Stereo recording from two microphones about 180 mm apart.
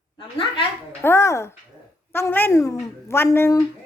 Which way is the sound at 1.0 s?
15° left (ahead or behind).